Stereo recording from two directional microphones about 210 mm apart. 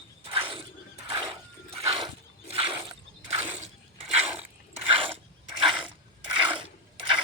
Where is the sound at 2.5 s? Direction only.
25° right (ahead or behind).